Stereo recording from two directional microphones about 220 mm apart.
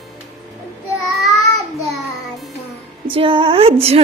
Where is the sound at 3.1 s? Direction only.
25° right (ahead or behind).